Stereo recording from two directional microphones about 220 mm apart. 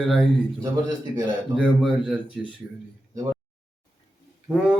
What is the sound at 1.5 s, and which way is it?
A man's voice, centre (ahead or behind).